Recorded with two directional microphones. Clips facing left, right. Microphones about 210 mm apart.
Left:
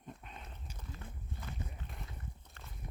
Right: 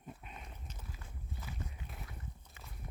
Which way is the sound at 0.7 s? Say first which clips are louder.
Even; 10° left (ahead or behind).